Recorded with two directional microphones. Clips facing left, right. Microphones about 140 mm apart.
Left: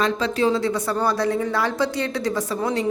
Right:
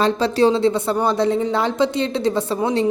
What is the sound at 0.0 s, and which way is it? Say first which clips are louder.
Speech: right 5 dB; 30° right (ahead or behind).